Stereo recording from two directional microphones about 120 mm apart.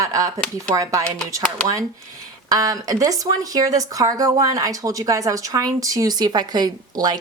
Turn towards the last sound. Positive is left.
turn(degrees=-35)  # may be behind; listen again after turning